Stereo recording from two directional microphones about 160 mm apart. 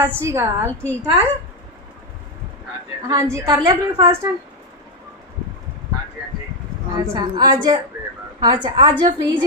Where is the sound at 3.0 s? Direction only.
20° right (ahead or behind).